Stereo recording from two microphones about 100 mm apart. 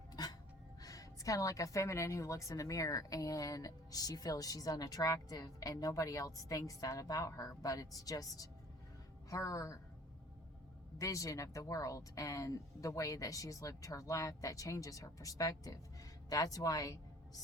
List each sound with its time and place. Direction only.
0.1 s gasp: 40° left (ahead or behind)
0.8 s a woman's voice: 35° left (ahead or behind)
10.9 s a woman's voice: 35° left (ahead or behind)